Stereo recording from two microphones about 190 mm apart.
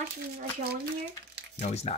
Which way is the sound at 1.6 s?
35° left (ahead or behind).